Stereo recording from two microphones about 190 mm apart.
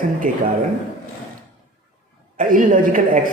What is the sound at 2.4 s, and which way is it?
Speech, 45° right (ahead or behind).